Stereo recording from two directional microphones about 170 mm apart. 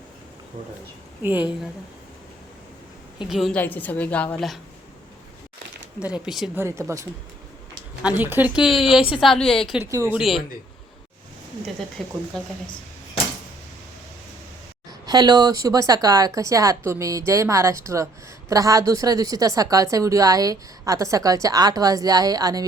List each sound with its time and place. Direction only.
1.2 s speech: 10° right (ahead or behind)
3.2 s a woman's voice: centre (ahead or behind)
6.2 s speech: centre (ahead or behind)
6.6 s speech: 15° right (ahead or behind)
8.0 s speech: 10° right (ahead or behind)
9.8 s speech: 15° right (ahead or behind)
10.2 s speech: centre (ahead or behind)
12.0 s speech: centre (ahead or behind)
14.8 s speech: 25° right (ahead or behind)